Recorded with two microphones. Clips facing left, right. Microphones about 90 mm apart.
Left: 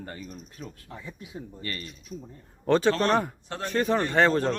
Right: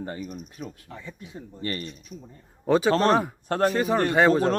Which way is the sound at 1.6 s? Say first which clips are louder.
Right 8 dB; 30° right (ahead or behind).